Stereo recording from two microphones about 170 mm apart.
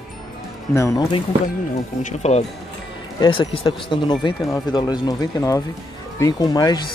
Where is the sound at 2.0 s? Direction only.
40° left (ahead or behind).